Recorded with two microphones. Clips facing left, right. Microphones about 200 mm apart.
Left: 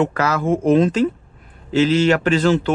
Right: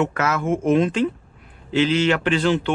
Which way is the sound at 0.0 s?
35° left (ahead or behind).